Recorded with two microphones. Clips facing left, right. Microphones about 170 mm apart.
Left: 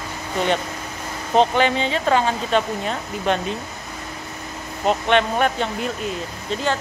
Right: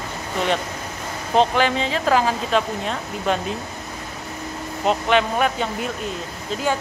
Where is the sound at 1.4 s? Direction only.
Centre (ahead or behind).